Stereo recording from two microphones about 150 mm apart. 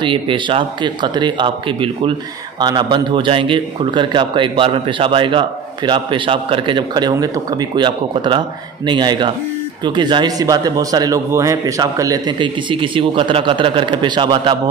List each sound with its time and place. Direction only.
0.0 s a man's voice: 35° right (ahead or behind)